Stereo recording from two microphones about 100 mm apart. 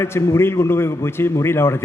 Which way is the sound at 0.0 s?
25° left (ahead or behind).